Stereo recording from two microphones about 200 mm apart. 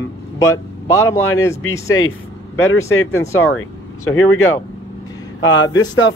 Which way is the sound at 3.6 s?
90° left.